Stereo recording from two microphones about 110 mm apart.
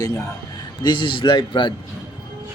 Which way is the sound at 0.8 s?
45° left (ahead or behind).